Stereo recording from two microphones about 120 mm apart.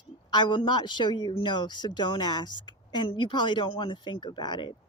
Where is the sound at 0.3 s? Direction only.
40° left (ahead or behind).